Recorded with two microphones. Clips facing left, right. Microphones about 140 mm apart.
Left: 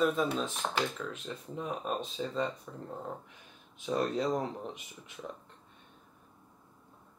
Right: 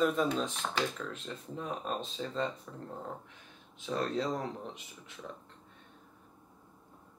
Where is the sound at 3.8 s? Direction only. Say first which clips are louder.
Left 2 dB; 15° left (ahead or behind).